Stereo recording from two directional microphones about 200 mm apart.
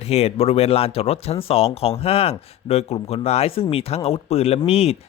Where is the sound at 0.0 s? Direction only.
30° left (ahead or behind).